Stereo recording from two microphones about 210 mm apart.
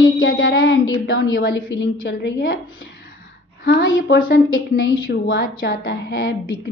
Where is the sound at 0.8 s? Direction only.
70° left (ahead or behind).